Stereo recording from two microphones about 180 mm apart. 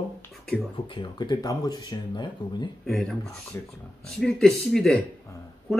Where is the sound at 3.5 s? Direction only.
15° left (ahead or behind).